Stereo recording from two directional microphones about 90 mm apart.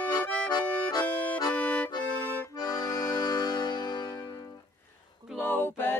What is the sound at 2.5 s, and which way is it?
Accordion, 45° left (ahead or behind).